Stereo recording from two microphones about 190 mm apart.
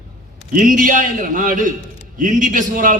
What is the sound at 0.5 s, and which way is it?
A man's voice, 45° right (ahead or behind).